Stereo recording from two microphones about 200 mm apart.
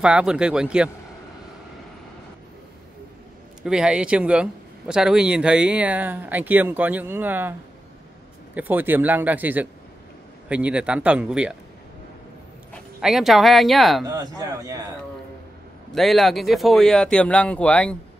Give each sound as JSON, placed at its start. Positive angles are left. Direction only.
{"t": 0.0, "sound": "speech", "side_deg": -5}
{"t": 3.6, "sound": "speech", "side_deg": -5}
{"t": 8.5, "sound": "speech", "side_deg": -10}
{"t": 13.0, "sound": "speech", "side_deg": 0}
{"t": 14.0, "sound": "speech", "side_deg": -20}
{"t": 15.9, "sound": "speech", "side_deg": 0}